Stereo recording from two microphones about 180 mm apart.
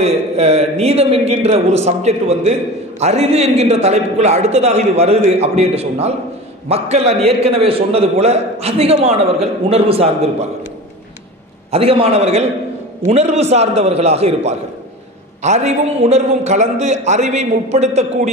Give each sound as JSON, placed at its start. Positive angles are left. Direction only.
{"t": 0.0, "sound": "a man's voice", "side_deg": -35}
{"t": 11.7, "sound": "a man's voice", "side_deg": -35}